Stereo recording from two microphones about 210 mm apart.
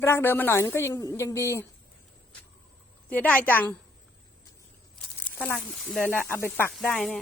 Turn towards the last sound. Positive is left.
turn(degrees=5)  # may be behind; listen again after turning